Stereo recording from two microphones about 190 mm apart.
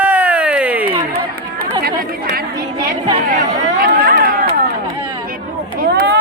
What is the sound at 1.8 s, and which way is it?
Chatter, 50° right (ahead or behind).